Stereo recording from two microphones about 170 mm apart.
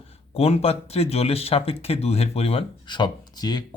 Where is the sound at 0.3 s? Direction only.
35° left (ahead or behind).